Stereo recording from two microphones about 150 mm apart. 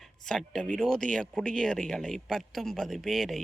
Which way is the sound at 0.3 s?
5° left (ahead or behind).